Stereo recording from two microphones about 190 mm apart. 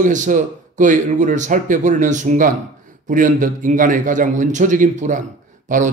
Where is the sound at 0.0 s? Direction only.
40° right (ahead or behind).